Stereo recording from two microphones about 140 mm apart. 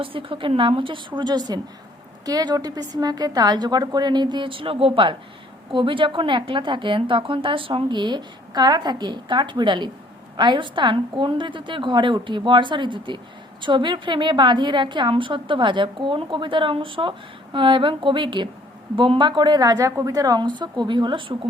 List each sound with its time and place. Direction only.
0.0 s a woman's voice: 40° right (ahead or behind)